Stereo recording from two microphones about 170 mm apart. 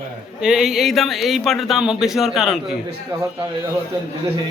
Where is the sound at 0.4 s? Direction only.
5° right (ahead or behind).